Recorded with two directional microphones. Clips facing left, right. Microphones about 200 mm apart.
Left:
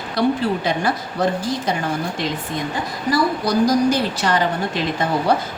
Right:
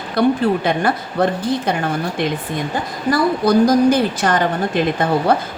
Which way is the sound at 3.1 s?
55° right (ahead or behind).